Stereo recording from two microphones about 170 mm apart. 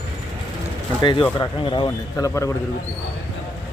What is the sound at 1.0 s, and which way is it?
Speech, 30° left (ahead or behind).